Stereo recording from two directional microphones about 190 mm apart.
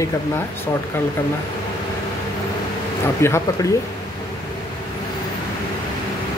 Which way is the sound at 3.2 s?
15° left (ahead or behind).